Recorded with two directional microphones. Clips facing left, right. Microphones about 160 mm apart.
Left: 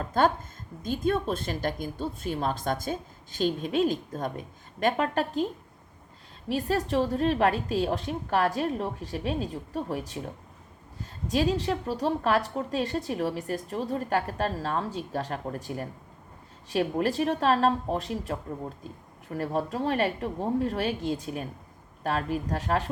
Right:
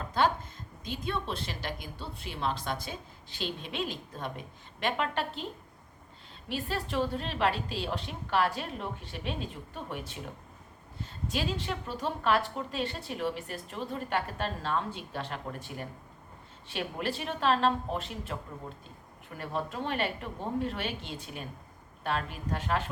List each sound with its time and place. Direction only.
0.0 s a woman's voice: 45° left (ahead or behind)
6.5 s a woman's voice: 40° left (ahead or behind)
11.3 s a woman's voice: 40° left (ahead or behind)